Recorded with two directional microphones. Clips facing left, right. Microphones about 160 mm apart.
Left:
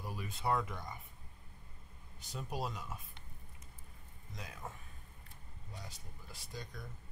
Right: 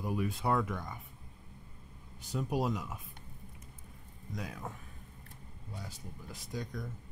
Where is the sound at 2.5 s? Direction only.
5° right (ahead or behind).